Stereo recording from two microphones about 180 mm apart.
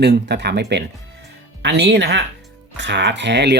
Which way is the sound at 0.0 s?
70° right (ahead or behind).